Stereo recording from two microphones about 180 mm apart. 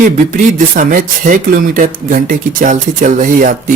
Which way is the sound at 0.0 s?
45° right (ahead or behind).